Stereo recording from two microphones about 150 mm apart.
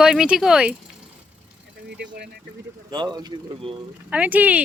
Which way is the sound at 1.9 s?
90° right.